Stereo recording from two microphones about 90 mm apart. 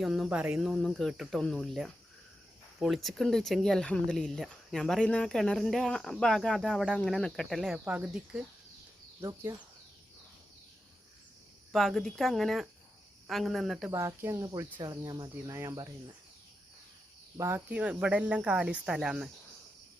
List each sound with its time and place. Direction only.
0.0 s speech: 5° right (ahead or behind)
0.8 s speech: 5° left (ahead or behind)
7.9 s speech: 15° right (ahead or behind)
9.2 s speech: 40° right (ahead or behind)
11.7 s speech: 5° left (ahead or behind)
13.9 s speech: 30° right (ahead or behind)
14.4 s speech: 40° right (ahead or behind)
17.3 s speech: 35° right (ahead or behind)
17.7 s speech: 15° right (ahead or behind)